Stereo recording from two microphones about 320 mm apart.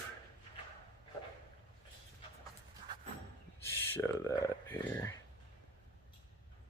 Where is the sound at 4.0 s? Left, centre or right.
Centre.